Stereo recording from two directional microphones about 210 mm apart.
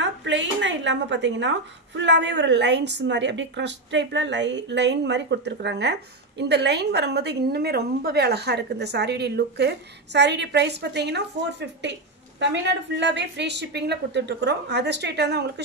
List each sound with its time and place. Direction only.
0.0 s a woman's voice: 60° right (ahead or behind)